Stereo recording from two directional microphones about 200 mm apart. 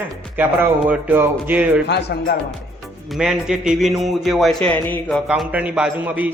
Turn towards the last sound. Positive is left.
turn(degrees=-10)  # may be behind; listen again after turning